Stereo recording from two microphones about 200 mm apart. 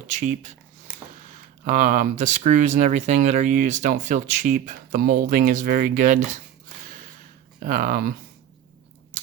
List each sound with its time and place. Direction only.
0.2 s speech: 40° right (ahead or behind)
1.6 s speech: 40° right (ahead or behind)
7.6 s speech: 40° right (ahead or behind)